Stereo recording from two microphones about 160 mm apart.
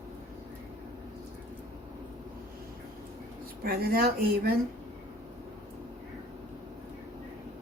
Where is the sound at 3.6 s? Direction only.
70° right (ahead or behind).